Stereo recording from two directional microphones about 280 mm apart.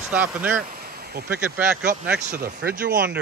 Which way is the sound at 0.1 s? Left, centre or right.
Centre.